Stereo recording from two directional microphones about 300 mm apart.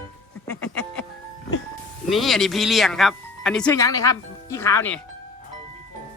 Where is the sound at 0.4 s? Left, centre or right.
Centre.